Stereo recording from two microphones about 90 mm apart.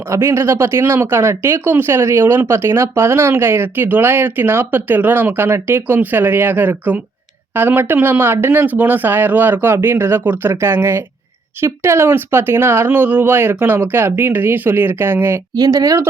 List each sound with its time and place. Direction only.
0.1 s speech: 30° right (ahead or behind)
15.5 s speech: 45° right (ahead or behind)